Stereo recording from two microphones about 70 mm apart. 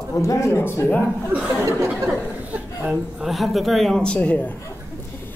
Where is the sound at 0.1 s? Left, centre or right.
Left.